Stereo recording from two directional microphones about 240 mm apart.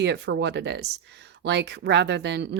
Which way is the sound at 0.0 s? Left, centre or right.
Right.